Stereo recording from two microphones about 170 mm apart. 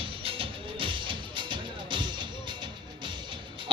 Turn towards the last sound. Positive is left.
turn(degrees=-25)  # may be behind; listen again after turning